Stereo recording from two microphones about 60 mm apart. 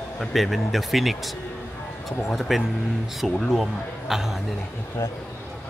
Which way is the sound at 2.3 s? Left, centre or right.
Centre.